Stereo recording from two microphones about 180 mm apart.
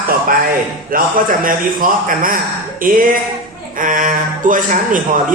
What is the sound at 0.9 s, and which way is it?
A man's voice, 50° right (ahead or behind).